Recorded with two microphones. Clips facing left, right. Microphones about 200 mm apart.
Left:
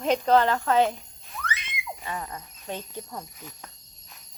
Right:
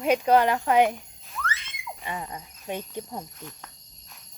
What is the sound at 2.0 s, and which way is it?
Speech, 15° right (ahead or behind).